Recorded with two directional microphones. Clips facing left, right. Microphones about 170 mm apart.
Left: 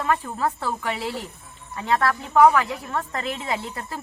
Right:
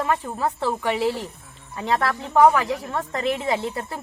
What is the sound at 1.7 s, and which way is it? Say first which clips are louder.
Speech: left 1 dB; 25° right (ahead or behind).